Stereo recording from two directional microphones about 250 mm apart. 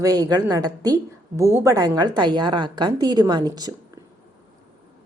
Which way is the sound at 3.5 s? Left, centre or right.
Centre.